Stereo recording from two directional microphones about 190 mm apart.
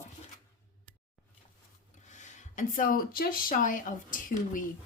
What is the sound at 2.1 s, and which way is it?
Speech, 40° left (ahead or behind).